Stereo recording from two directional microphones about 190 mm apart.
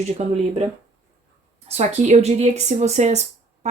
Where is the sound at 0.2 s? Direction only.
35° right (ahead or behind).